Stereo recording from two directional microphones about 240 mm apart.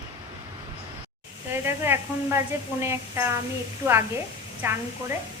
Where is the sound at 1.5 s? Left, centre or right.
Centre.